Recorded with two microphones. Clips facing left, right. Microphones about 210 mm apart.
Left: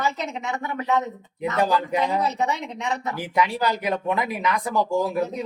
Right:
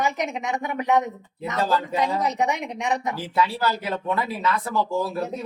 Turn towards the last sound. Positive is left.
turn(degrees=15)  # may be behind; listen again after turning